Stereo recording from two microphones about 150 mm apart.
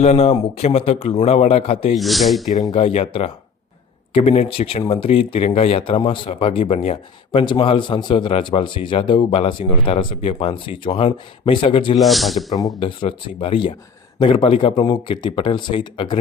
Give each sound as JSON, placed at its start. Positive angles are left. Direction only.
{"t": 0.0, "sound": "a man's voice", "side_deg": 45}
{"t": 2.0, "sound": "a man's voice", "side_deg": 0}
{"t": 2.7, "sound": "speech", "side_deg": 40}
{"t": 11.9, "sound": "a man's voice", "side_deg": 0}
{"t": 12.8, "sound": "speech", "side_deg": 35}